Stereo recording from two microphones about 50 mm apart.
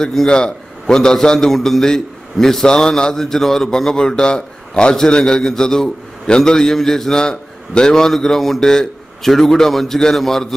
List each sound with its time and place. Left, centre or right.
0.0 s a man's voice: centre